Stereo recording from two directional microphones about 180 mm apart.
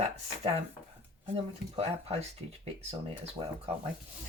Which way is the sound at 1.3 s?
35° right (ahead or behind).